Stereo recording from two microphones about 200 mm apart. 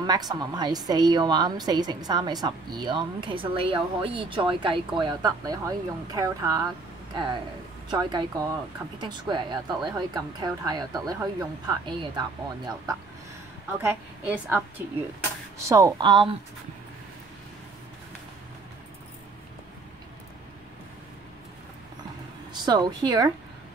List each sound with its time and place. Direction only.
0.3 s a woman's voice: 20° right (ahead or behind)
7.9 s a woman's voice: 20° right (ahead or behind)
13.7 s a woman's voice: 10° right (ahead or behind)
22.5 s a woman's voice: 20° right (ahead or behind)